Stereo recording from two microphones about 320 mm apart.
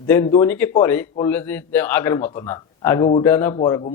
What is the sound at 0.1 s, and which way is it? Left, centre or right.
Speech, centre.